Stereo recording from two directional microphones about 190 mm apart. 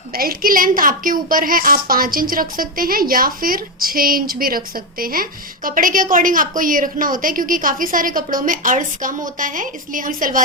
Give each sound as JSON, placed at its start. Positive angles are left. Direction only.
{"t": 0.1, "sound": "a woman's voice", "side_deg": -50}